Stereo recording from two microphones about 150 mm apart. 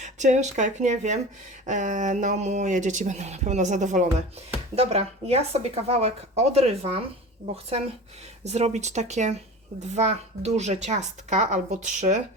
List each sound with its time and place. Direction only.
0.0 s speech: 50° right (ahead or behind)